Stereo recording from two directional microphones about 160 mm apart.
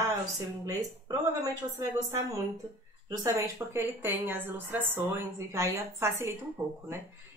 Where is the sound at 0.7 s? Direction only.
20° right (ahead or behind).